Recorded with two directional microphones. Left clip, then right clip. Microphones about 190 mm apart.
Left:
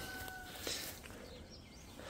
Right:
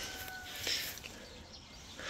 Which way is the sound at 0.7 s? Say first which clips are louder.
Right 7 dB; 30° left (ahead or behind).